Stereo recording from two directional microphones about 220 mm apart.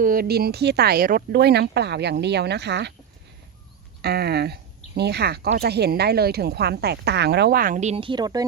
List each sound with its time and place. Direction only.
0.0 s speech: 40° right (ahead or behind)
4.0 s speech: 45° right (ahead or behind); by 8.4 s 15° right (ahead or behind)